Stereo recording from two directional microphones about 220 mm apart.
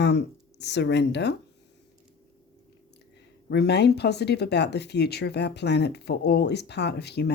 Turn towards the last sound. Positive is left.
turn(degrees=50)  # may be behind; listen again after turning